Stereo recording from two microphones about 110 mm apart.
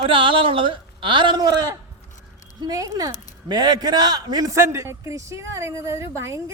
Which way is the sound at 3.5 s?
40° right (ahead or behind).